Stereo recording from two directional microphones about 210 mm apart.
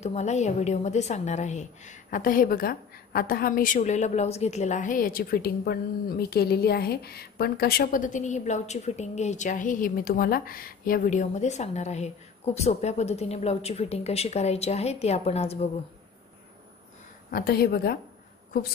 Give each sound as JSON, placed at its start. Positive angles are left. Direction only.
{"t": 0.0, "sound": "a woman's voice", "side_deg": 35}
{"t": 17.3, "sound": "speech", "side_deg": 45}